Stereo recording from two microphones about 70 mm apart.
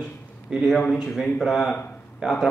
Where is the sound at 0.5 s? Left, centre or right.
Centre.